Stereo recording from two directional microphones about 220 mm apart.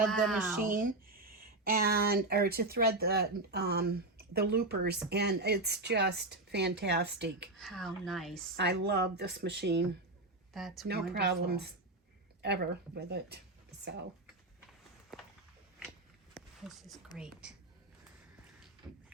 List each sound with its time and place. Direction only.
0.1 s speech: centre (ahead or behind)
0.6 s speech: 35° right (ahead or behind)
7.6 s speech: centre (ahead or behind)
8.5 s speech: 50° right (ahead or behind)
10.5 s speech: centre (ahead or behind)
10.8 s speech: 50° right (ahead or behind)
16.3 s a sound: centre (ahead or behind)
17.2 s speech: 5° right (ahead or behind)